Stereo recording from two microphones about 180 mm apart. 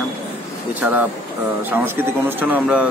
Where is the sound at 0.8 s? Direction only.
10° right (ahead or behind).